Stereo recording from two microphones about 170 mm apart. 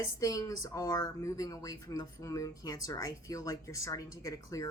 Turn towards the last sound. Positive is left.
turn(degrees=20)  # may be behind; listen again after turning